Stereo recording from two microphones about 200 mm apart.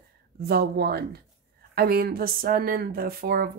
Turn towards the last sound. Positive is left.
turn(degrees=-50)  # may be behind; listen again after turning